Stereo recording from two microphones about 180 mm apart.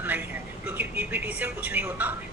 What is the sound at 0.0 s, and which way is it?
Speech, 10° right (ahead or behind).